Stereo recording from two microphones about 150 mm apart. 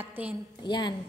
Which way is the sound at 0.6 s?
30° left (ahead or behind).